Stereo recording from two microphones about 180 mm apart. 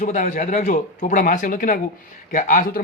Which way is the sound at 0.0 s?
45° left (ahead or behind).